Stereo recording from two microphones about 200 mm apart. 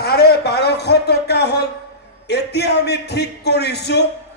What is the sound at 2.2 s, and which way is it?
A man's voice, 55° left (ahead or behind).